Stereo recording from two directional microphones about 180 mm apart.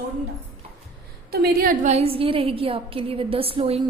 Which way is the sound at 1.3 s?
60° right (ahead or behind).